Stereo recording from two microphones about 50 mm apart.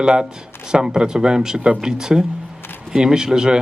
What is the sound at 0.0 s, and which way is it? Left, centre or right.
Speech, centre.